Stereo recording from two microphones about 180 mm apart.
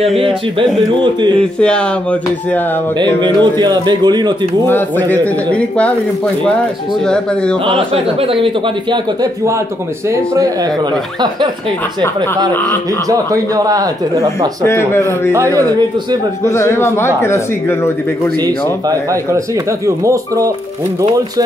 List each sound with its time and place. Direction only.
1.4 s speech: 5° left (ahead or behind)
3.2 s speech: 25° right (ahead or behind)
4.6 s speech: 10° left (ahead or behind)
7.6 s speech: 30° right (ahead or behind)
13.1 s speech: 20° right (ahead or behind)
14.7 s speech: 15° left (ahead or behind)
15.3 s speech: 15° right (ahead or behind)
16.4 s speech: 15° left (ahead or behind)
18.4 s speech: 20° right (ahead or behind)